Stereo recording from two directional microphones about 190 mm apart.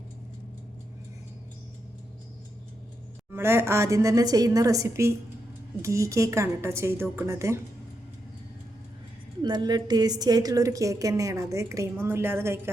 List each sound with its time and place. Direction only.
3.3 s a woman's voice: 15° right (ahead or behind)
9.4 s a woman's voice: 20° right (ahead or behind)